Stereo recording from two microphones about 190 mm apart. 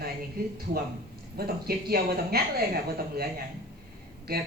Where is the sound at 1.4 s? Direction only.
55° right (ahead or behind).